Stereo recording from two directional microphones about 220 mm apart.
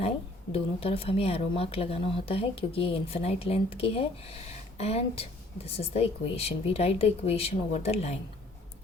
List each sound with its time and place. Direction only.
0.5 s speech: 25° left (ahead or behind)